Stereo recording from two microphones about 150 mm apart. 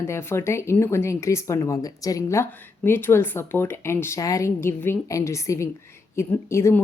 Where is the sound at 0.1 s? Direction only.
15° left (ahead or behind).